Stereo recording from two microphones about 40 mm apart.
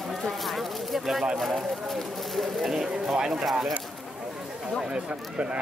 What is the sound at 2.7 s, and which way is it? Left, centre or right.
Speech, centre.